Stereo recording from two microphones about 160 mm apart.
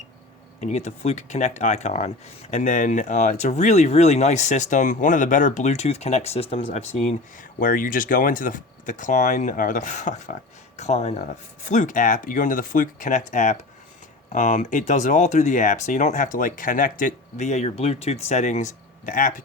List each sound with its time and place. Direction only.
0.6 s speech: 45° left (ahead or behind)
7.6 s speech: 60° left (ahead or behind)